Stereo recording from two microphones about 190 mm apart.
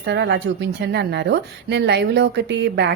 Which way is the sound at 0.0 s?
60° right (ahead or behind).